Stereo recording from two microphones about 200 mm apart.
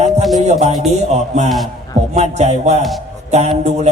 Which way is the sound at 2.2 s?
35° right (ahead or behind).